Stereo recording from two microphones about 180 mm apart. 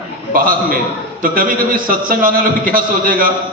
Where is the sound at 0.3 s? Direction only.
50° right (ahead or behind).